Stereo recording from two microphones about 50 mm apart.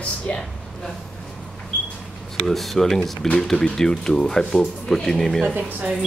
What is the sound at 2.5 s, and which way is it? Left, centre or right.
Speech, centre.